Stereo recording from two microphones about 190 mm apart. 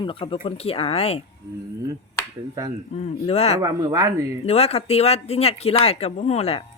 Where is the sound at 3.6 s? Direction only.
20° right (ahead or behind).